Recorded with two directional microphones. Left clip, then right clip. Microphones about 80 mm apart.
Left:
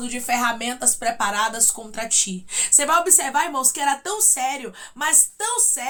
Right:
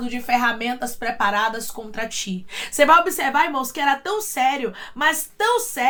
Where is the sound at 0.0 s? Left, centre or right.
Left.